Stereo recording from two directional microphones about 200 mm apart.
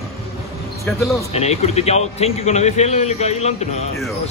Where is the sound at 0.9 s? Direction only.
10° left (ahead or behind).